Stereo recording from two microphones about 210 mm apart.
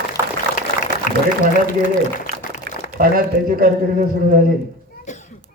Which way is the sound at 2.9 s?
45° right (ahead or behind).